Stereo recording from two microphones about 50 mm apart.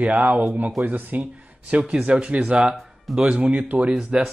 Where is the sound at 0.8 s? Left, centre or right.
Right.